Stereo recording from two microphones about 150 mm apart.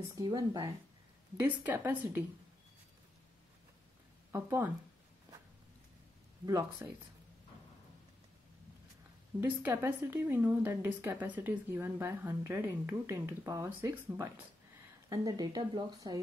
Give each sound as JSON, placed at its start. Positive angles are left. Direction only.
{"t": 0.1, "sound": "a woman's voice", "side_deg": -25}
{"t": 4.3, "sound": "speech", "side_deg": -15}
{"t": 6.4, "sound": "speech", "side_deg": -25}
{"t": 9.4, "sound": "a woman's voice", "side_deg": -15}